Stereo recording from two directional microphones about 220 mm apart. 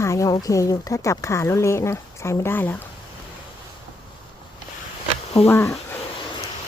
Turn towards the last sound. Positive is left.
turn(degrees=10)  # may be behind; listen again after turning